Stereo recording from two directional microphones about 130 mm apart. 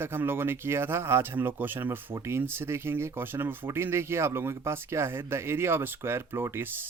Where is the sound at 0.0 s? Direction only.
15° right (ahead or behind).